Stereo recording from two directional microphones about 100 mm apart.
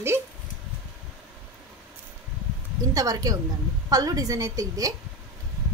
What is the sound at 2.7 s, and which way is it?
A woman's voice, 35° right (ahead or behind).